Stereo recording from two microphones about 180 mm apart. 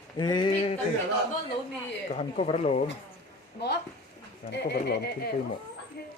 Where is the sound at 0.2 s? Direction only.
25° left (ahead or behind).